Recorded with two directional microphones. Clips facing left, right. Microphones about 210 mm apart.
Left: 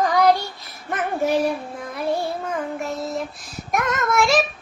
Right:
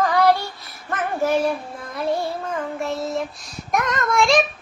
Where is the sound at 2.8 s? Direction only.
Centre (ahead or behind).